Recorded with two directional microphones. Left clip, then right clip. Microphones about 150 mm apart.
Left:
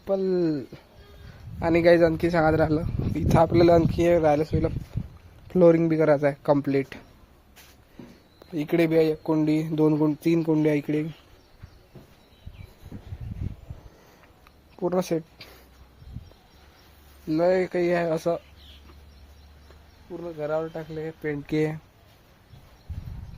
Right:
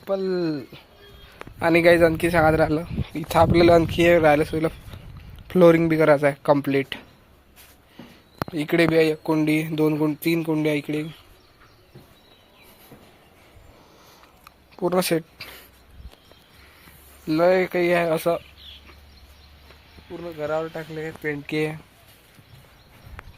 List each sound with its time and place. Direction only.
0.0 s speech: 30° left (ahead or behind)
1.5 s speech: 5° left (ahead or behind)
8.5 s speech: 10° left (ahead or behind)
9.7 s speech: 30° left (ahead or behind)
14.8 s speech: centre (ahead or behind)
17.2 s speech: 5° left (ahead or behind)
20.1 s speech: centre (ahead or behind)
21.4 s speech: 30° left (ahead or behind)